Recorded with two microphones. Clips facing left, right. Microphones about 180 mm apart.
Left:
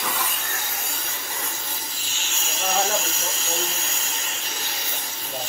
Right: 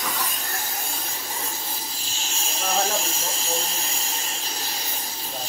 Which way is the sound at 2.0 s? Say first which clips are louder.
Right 1 dB; 30° right (ahead or behind).